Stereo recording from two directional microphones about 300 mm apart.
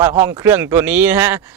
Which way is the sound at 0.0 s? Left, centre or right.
Centre.